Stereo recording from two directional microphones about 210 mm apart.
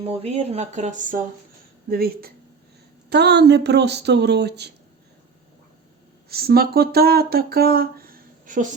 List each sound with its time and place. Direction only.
0.0 s speech: 30° right (ahead or behind); by 4.7 s 55° right (ahead or behind)
6.2 s speech: 45° right (ahead or behind)